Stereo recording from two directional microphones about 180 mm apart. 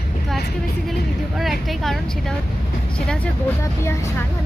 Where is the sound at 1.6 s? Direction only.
Centre (ahead or behind).